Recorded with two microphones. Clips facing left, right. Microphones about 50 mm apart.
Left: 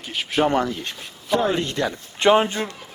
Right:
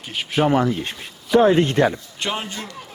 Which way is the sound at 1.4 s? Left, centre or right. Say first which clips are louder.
Right 10 dB; right.